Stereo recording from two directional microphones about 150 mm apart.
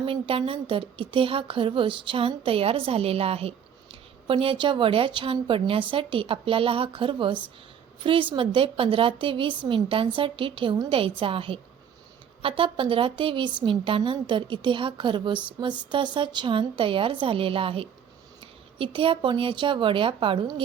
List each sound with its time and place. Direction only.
0.0 s a woman's voice: 35° right (ahead or behind)